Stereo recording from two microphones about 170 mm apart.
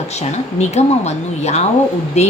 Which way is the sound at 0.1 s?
40° left (ahead or behind).